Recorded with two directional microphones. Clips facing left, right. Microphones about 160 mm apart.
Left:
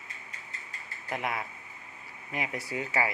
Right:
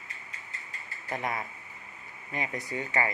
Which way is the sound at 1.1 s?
5° left (ahead or behind).